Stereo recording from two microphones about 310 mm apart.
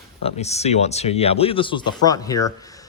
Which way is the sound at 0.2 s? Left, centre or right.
Centre.